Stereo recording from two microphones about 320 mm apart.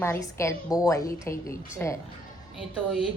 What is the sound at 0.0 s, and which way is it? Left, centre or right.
A woman's voice, centre.